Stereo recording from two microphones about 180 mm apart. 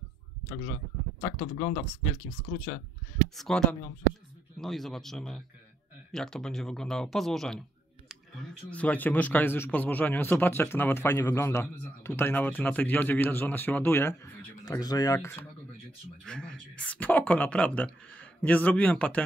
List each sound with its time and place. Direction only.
1.4 s speech: 30° left (ahead or behind)
3.3 s speech: 5° left (ahead or behind)
16.3 s speech: 5° left (ahead or behind)